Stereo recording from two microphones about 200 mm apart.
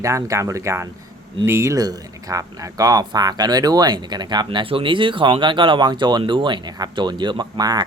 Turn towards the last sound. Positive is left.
turn(degrees=-20)  # may be behind; listen again after turning